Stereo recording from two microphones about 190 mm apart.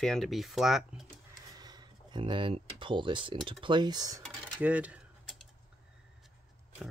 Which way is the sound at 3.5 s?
25° right (ahead or behind).